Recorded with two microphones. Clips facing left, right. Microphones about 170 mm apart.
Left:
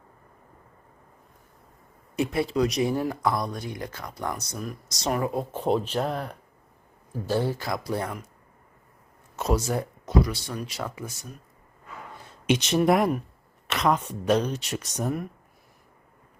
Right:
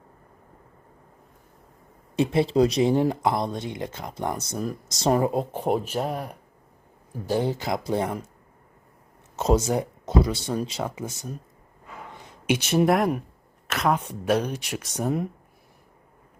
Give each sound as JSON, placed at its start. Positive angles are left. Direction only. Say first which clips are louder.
{"t": 2.1, "sound": "speech", "louder": "right 4 dB", "side_deg": -25}
{"t": 9.3, "sound": "speech", "louder": "right 4 dB", "side_deg": -25}
{"t": 12.1, "sound": "a sound", "louder": "left 1 dB", "side_deg": -15}
{"t": 13.7, "sound": "speech", "louder": "even", "side_deg": 0}